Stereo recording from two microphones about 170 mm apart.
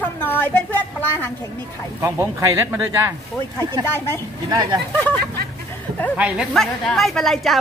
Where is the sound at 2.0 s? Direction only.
15° right (ahead or behind).